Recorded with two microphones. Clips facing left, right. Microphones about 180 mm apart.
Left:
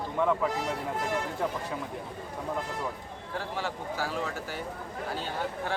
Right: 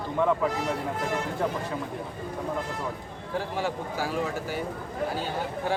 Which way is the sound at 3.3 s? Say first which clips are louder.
Right 5 dB; 15° right (ahead or behind).